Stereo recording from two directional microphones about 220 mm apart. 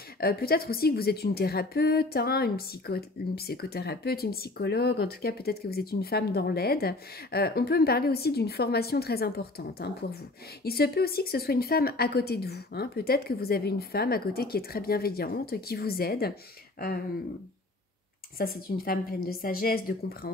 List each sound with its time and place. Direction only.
0.2 s a woman's voice: 45° left (ahead or behind)
18.4 s a woman's voice: 40° left (ahead or behind)